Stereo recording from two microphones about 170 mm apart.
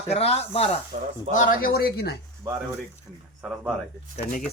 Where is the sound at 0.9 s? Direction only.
50° right (ahead or behind).